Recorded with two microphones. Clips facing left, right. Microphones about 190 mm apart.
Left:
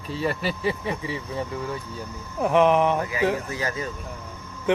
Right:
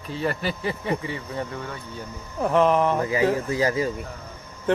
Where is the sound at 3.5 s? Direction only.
25° right (ahead or behind).